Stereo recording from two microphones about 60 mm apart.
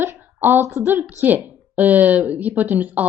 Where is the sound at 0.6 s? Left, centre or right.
Right.